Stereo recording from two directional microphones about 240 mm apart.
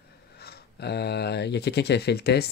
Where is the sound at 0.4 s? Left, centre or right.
Left.